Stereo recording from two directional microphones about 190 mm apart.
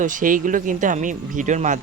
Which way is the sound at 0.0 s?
45° right (ahead or behind).